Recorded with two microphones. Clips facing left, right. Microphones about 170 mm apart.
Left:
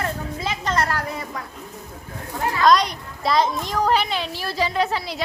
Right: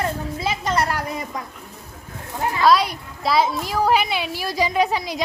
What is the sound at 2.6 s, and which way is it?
A child's voice, 5° right (ahead or behind).